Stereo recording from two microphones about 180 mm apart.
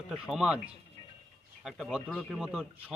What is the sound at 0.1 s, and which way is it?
Speech, 5° right (ahead or behind).